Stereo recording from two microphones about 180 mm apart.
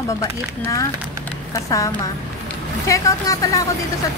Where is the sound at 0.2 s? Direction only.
15° left (ahead or behind).